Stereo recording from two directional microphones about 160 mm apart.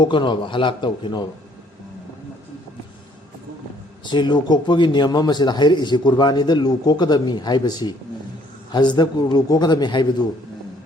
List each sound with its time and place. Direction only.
0.0 s a man's voice: 30° left (ahead or behind)
4.0 s a man's voice: 30° left (ahead or behind)